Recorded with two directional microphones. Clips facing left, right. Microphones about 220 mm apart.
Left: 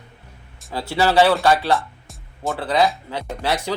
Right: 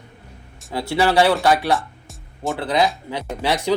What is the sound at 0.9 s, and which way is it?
Speech, 15° right (ahead or behind).